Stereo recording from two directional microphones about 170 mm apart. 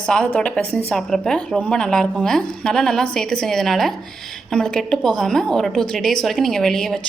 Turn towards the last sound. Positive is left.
turn(degrees=5)  # may be behind; listen again after turning